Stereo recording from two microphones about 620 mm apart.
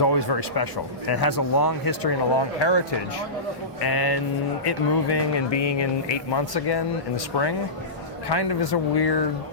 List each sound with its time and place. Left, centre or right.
0.0 s speech: left
8.3 s speech: left